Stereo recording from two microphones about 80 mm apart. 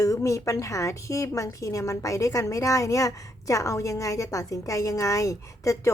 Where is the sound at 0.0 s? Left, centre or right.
Left.